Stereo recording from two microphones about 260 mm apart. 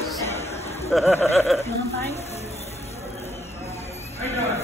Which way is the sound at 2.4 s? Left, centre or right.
Left.